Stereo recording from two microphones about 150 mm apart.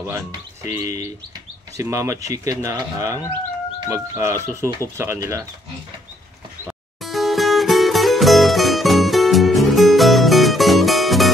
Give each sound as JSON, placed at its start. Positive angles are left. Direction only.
{"t": 0.7, "sound": "speech", "side_deg": -20}
{"t": 7.0, "sound": "music", "side_deg": 0}